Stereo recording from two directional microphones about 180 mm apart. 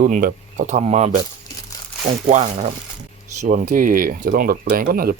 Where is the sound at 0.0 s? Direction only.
50° right (ahead or behind).